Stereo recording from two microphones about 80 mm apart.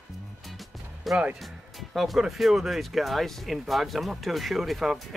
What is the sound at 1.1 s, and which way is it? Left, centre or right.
Speech, centre.